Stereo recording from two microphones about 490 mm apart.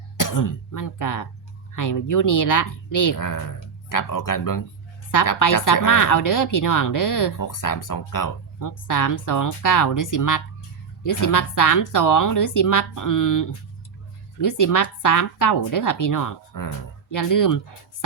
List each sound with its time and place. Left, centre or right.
0.2 s a woman's voice: left